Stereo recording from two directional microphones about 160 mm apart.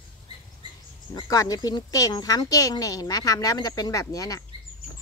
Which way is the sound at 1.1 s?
25° left (ahead or behind).